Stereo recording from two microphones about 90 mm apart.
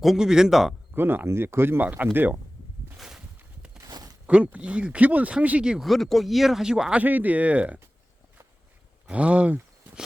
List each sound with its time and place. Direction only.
0.0 s speech: 5° right (ahead or behind)
0.9 s speech: 25° right (ahead or behind)
3.0 s a sound: 5° right (ahead or behind)
3.8 s a sound: 45° right (ahead or behind)
4.3 s speech: 10° right (ahead or behind)
7.0 s speech: 20° right (ahead or behind)
9.0 s speech: 15° right (ahead or behind)